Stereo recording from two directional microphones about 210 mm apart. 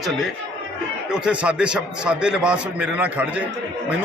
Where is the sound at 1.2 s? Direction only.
5° right (ahead or behind).